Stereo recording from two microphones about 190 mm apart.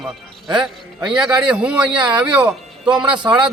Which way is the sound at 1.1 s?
5° right (ahead or behind).